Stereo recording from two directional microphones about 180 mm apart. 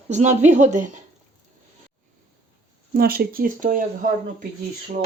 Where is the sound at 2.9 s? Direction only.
55° right (ahead or behind).